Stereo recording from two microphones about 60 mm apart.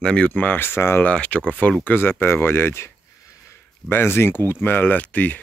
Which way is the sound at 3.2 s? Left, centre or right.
Left.